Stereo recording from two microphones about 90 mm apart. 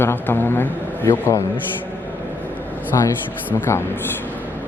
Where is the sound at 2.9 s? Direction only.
40° left (ahead or behind).